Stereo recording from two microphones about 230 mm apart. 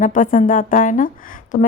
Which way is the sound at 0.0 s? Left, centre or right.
Left.